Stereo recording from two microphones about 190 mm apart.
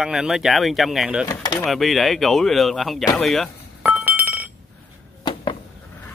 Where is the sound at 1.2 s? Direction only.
20° left (ahead or behind).